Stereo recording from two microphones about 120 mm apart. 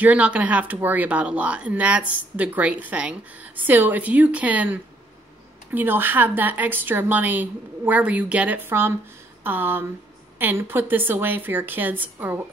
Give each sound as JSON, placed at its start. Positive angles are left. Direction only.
{"t": 0.0, "sound": "speech", "side_deg": -10}